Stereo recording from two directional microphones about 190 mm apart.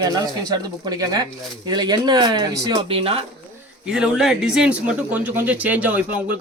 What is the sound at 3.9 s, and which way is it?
Speech, 5° right (ahead or behind).